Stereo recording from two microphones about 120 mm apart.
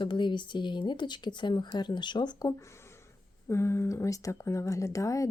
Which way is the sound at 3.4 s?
25° left (ahead or behind).